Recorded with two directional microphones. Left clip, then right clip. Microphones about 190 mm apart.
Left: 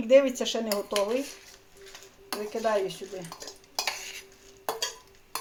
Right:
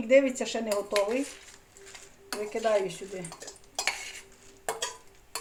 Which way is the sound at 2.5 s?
10° left (ahead or behind).